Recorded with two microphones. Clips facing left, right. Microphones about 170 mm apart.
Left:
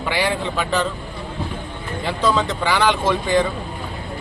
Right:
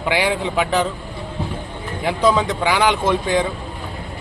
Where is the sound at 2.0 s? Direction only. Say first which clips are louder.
Right 3 dB; 15° right (ahead or behind).